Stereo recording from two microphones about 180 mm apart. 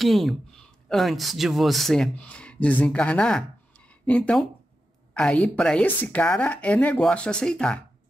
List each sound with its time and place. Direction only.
0.0 s speech: centre (ahead or behind)